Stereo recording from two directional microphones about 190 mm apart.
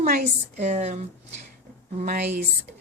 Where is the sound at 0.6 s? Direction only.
35° right (ahead or behind).